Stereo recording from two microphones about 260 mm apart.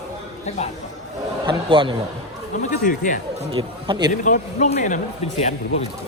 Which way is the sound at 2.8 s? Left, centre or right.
Left.